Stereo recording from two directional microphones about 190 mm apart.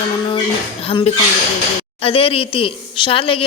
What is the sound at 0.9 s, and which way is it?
A woman's voice, 30° left (ahead or behind).